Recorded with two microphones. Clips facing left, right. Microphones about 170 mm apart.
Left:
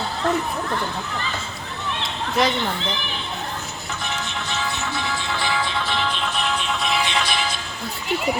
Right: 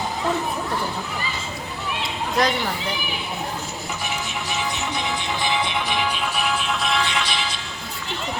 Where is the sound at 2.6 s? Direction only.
10° right (ahead or behind).